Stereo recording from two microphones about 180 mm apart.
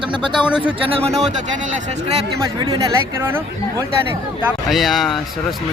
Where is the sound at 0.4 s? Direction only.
5° right (ahead or behind).